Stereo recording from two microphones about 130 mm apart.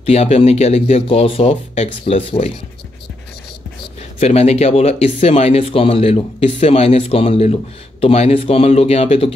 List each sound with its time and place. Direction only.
0.0 s speech: 55° left (ahead or behind)
4.2 s speech: 55° left (ahead or behind)